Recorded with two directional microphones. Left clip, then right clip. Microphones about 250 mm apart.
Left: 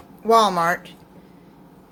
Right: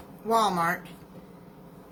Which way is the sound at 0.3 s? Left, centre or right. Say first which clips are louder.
Left 8 dB; left.